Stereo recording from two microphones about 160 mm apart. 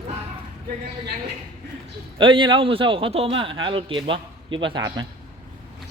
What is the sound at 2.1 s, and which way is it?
A man's voice, 30° right (ahead or behind).